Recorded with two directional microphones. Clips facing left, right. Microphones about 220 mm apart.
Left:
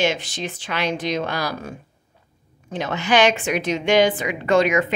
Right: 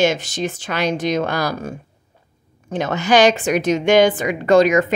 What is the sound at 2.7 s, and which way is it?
A woman's voice, 45° right (ahead or behind).